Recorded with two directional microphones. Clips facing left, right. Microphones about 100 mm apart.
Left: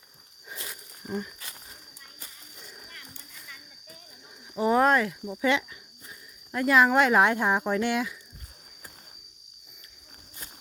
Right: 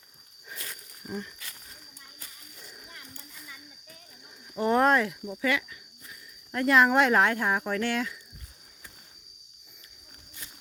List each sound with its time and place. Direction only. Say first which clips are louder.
4.5 s speech: left 1 dB; 5° left (ahead or behind)
5.4 s speech: left 3 dB; 25° left (ahead or behind)
6.5 s speech: left 1 dB; 5° left (ahead or behind)
7.2 s speech: left 2 dB; 20° left (ahead or behind)